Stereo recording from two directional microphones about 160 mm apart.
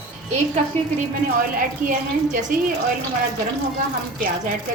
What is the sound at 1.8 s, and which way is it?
Speech, 55° right (ahead or behind).